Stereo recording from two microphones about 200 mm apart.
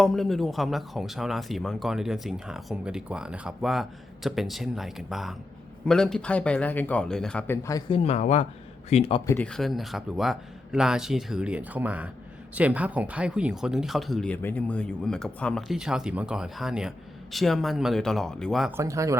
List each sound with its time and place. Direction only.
0.0 s speech: centre (ahead or behind); by 9.2 s 30° left (ahead or behind)
9.2 s speech: 10° left (ahead or behind)
18.8 s speech: 15° right (ahead or behind)